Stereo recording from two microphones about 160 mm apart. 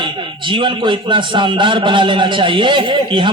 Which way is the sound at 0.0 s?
30° right (ahead or behind).